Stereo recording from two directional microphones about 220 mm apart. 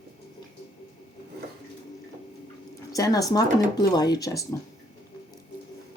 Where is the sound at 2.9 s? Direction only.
15° left (ahead or behind).